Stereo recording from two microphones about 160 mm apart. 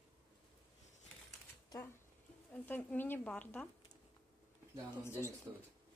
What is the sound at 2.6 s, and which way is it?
Speech, 10° left (ahead or behind).